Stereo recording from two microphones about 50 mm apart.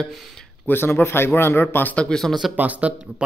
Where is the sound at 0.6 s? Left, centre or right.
Left.